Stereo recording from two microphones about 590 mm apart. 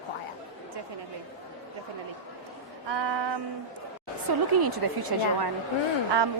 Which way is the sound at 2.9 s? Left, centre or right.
Right.